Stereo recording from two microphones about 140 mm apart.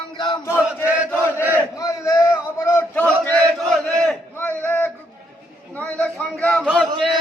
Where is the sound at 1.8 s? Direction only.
20° left (ahead or behind); by 4.2 s centre (ahead or behind).